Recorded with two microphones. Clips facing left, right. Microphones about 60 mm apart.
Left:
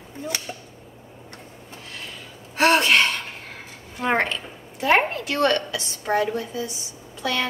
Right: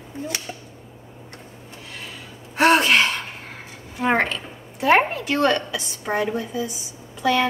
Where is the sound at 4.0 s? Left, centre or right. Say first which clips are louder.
Right 2 dB; centre.